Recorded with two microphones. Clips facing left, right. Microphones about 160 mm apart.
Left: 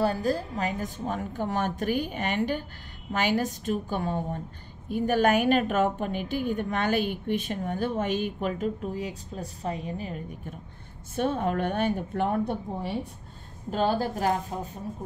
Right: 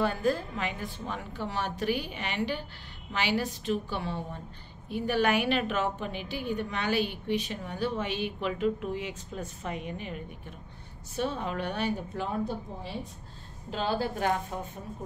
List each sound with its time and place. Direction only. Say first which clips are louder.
0.0 s a woman's voice: left 2 dB; 40° left (ahead or behind)
11.1 s a woman's voice: left 5 dB; 50° left (ahead or behind)
13.7 s a woman's voice: left 4 dB; 45° left (ahead or behind)